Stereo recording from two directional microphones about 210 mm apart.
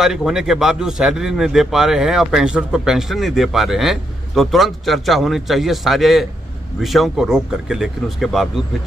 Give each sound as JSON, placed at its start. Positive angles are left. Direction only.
{"t": 0.0, "sound": "a man's voice", "side_deg": 0}